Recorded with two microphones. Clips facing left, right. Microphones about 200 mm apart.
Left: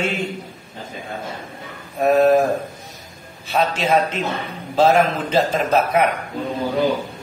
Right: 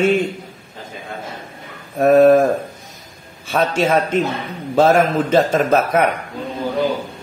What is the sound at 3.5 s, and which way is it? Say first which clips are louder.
A man's voice: right 2 dB; 50° right (ahead or behind).